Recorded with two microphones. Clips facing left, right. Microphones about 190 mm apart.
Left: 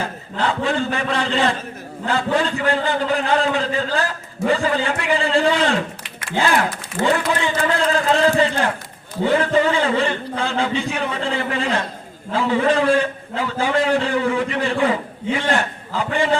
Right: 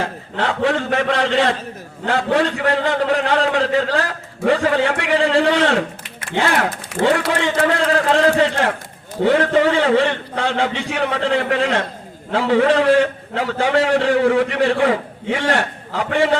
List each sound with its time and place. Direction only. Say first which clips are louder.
0.3 s a man's voice: right 2 dB; 80° right
7.0 s a man's voice: right 2 dB; 75° right (ahead or behind)